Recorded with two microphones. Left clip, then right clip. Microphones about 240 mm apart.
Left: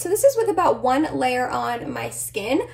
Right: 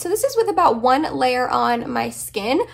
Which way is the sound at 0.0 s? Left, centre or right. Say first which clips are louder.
Left 1 dB; centre.